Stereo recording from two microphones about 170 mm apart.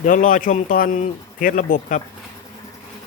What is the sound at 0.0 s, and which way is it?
Speech, 50° left (ahead or behind).